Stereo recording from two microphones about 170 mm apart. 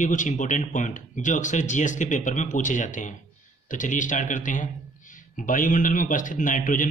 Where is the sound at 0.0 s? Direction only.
50° left (ahead or behind).